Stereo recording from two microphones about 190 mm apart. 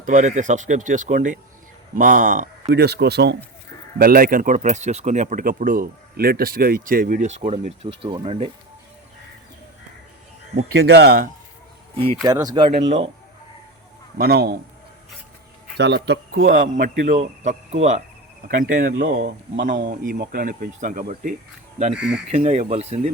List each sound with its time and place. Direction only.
0.0 s speech: 40° right (ahead or behind)
2.7 s speech: 60° right (ahead or behind)
3.9 s speech: 50° right (ahead or behind); by 8.4 s 30° right (ahead or behind)
10.8 s speech: 60° right (ahead or behind)
12.2 s speech: 20° right (ahead or behind)
14.2 s speech: 55° right (ahead or behind)
15.8 s speech: 60° right (ahead or behind); by 18.0 s 35° right (ahead or behind)
18.4 s speech: 45° right (ahead or behind)